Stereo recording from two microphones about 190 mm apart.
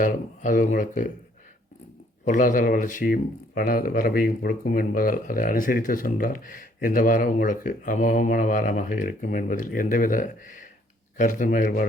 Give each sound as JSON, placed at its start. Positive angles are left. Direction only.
{"t": 0.0, "sound": "speech", "side_deg": 45}
{"t": 2.2, "sound": "speech", "side_deg": 45}